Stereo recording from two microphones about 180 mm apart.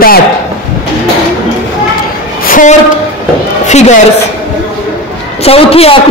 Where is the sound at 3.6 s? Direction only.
40° left (ahead or behind).